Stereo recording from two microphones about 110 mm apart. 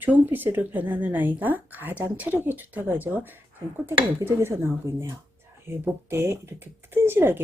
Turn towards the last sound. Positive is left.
turn(degrees=-20)  # may be behind; listen again after turning